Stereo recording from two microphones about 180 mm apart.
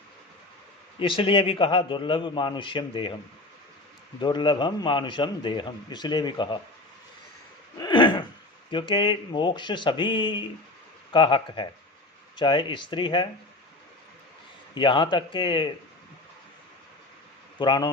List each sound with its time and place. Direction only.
0.9 s a man's voice: 30° left (ahead or behind)
4.2 s a man's voice: 25° left (ahead or behind)
7.8 s a sound: 25° left (ahead or behind)
8.7 s a man's voice: 25° left (ahead or behind)
14.8 s a man's voice: 25° left (ahead or behind)
17.6 s a man's voice: 25° left (ahead or behind)